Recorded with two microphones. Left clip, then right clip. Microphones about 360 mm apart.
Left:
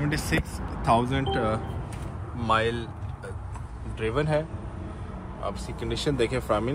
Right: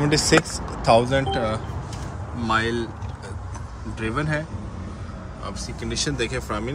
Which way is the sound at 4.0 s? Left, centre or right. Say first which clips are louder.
Even; centre.